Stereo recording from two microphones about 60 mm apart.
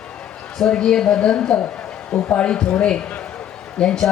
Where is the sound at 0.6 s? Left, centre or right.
Centre.